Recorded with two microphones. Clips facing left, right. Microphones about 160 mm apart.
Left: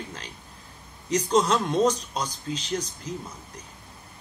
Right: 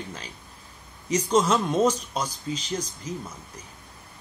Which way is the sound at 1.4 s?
5° right (ahead or behind).